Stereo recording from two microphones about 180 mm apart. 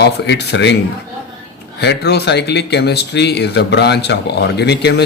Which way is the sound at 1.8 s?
65° left (ahead or behind).